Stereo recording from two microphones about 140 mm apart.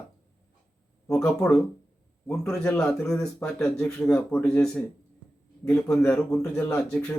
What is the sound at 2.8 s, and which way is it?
Speech, 5° left (ahead or behind).